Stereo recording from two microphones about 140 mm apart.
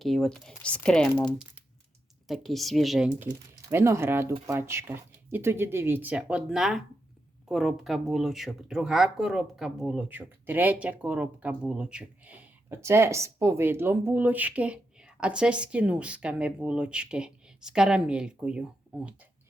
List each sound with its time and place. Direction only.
0.0 s speech: centre (ahead or behind)
2.2 s speech: centre (ahead or behind)
3.7 s speech: 20° right (ahead or behind)